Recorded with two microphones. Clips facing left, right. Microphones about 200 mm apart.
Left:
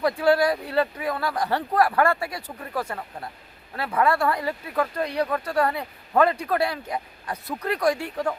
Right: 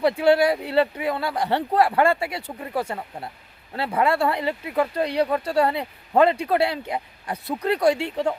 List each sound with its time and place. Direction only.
0.0 s speech: 25° right (ahead or behind)